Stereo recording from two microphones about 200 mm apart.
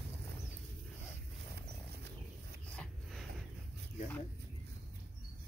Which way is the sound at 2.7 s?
5° left (ahead or behind).